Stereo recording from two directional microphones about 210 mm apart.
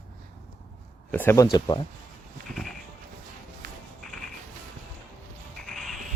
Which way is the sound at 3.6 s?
45° right (ahead or behind).